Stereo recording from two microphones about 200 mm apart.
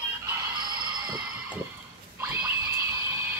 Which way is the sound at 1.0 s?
15° right (ahead or behind).